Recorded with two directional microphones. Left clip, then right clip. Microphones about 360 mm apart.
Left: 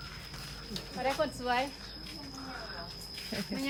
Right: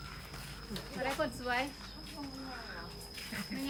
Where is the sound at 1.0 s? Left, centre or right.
Left.